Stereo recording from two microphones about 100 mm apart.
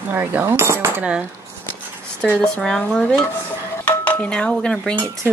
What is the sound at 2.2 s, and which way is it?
Speech, 10° left (ahead or behind).